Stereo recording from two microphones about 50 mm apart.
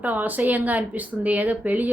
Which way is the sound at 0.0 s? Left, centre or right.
Right.